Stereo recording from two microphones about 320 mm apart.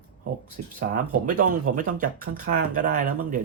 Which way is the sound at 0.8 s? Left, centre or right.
Right.